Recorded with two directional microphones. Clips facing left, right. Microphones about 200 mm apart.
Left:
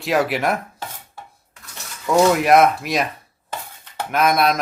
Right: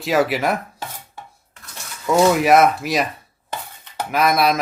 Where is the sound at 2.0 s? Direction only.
Centre (ahead or behind).